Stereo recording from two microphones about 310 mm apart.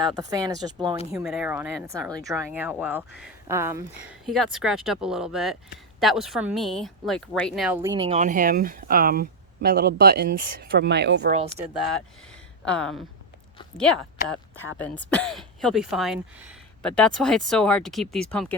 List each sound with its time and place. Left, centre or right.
0.0 s speech: centre
1.1 s speech: centre
8.1 s speech: right
12.6 s speech: centre
14.3 s speech: centre